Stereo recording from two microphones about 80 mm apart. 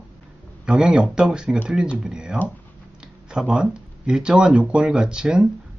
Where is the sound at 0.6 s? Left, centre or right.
Centre.